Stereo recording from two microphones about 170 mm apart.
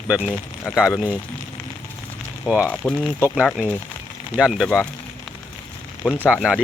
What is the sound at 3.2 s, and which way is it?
Speech, 10° right (ahead or behind).